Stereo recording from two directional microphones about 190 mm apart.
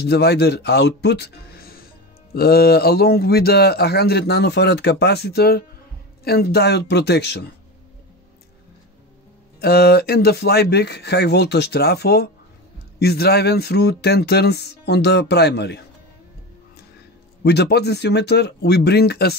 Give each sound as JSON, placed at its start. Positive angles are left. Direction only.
{"t": 0.0, "sound": "a man's voice", "side_deg": 60}
{"t": 9.6, "sound": "a man's voice", "side_deg": 55}
{"t": 17.4, "sound": "a man's voice", "side_deg": 60}